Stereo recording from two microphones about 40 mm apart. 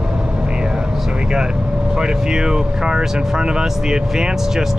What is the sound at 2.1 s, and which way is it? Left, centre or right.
Speech, centre.